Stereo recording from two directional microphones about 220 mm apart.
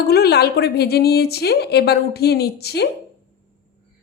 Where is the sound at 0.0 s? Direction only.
45° left (ahead or behind).